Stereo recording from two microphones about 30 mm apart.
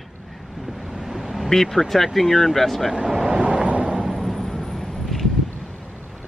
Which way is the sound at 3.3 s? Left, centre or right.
Right.